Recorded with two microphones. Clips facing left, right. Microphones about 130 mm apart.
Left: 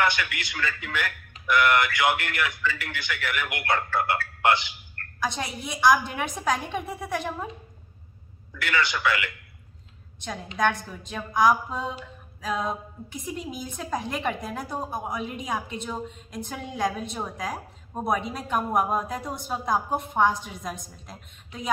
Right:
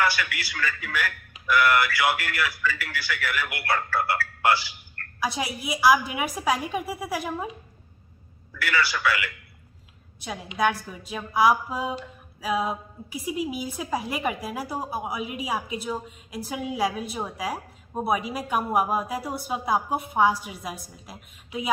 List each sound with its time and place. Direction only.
0.0 s a man's voice: 20° left (ahead or behind)
5.2 s a woman's voice: 5° right (ahead or behind)
8.5 s a man's voice: 20° left (ahead or behind)
10.2 s a woman's voice: 5° right (ahead or behind)